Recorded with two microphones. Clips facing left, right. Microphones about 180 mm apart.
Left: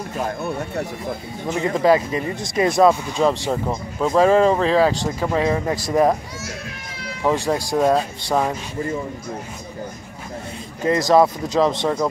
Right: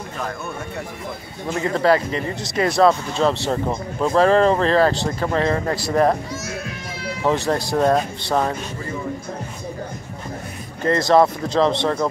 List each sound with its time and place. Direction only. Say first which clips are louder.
0.2 s speech: left 4 dB; 35° left (ahead or behind)
1.5 s speech: left 1 dB; 15° left (ahead or behind)
7.2 s speech: even; 10° left (ahead or behind)
10.8 s speech: even; 15° left (ahead or behind)